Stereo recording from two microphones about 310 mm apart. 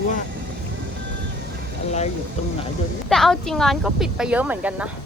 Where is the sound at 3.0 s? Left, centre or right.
Centre.